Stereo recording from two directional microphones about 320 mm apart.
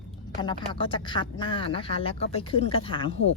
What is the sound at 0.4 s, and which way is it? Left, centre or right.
Speech, centre.